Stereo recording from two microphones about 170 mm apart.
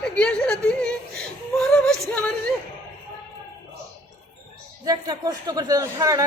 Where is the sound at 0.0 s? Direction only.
5° left (ahead or behind).